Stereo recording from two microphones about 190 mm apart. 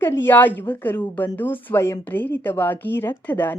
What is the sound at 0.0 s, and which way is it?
Speech, 10° left (ahead or behind).